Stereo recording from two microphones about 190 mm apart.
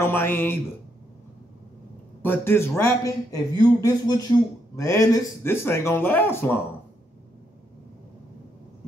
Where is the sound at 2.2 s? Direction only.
10° left (ahead or behind).